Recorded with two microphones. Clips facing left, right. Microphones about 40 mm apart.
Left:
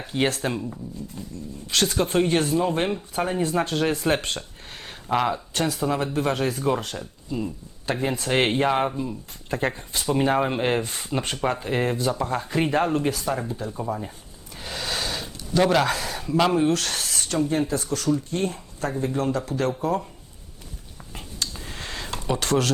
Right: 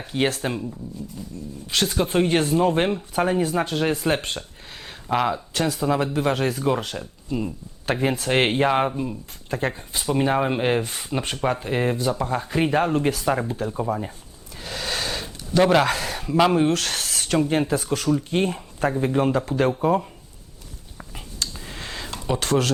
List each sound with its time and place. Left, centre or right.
0.0 s speech: centre
1.6 s speech: centre
7.0 s speech: centre
9.5 s speech: centre
14.6 s speech: centre
17.8 s speech: centre
18.3 s speech: right
18.8 s speech: right
21.5 s a sound: centre